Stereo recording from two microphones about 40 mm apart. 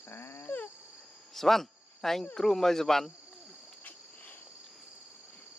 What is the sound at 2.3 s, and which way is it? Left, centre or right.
Speech, centre.